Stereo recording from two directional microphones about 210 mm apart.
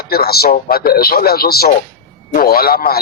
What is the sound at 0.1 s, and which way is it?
Speech, 45° left (ahead or behind).